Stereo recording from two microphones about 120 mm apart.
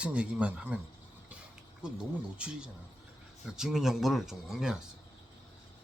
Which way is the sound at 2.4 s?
10° right (ahead or behind).